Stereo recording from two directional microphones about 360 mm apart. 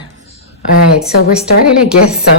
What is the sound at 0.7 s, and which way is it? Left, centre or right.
Speech, left.